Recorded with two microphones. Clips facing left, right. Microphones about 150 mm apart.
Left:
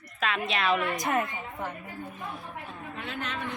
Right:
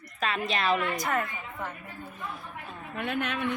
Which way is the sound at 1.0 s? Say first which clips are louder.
Left 2 dB; 20° left (ahead or behind).